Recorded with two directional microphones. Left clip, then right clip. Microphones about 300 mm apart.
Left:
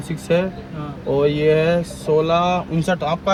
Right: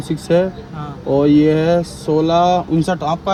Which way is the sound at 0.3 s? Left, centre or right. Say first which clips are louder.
Right 4 dB; right.